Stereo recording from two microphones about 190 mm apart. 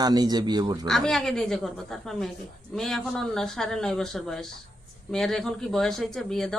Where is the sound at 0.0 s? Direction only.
20° right (ahead or behind).